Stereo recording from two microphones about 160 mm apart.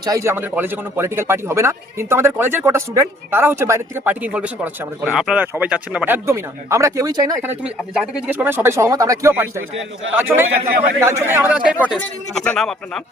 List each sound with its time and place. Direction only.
0.0 s a man's voice: 20° right (ahead or behind)
7.4 s a man's voice: 10° right (ahead or behind)
11.9 s speech: 5° left (ahead or behind)